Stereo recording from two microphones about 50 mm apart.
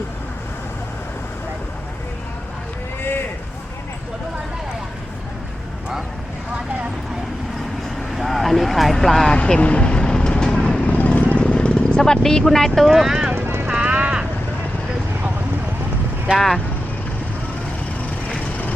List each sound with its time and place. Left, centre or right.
3.0 s run: left
8.1 s vehicle: centre
9.2 s vehicle: left
10.8 s vehicle: left
11.4 s speech: centre
13.7 s vehicle: right
18.3 s vehicle: left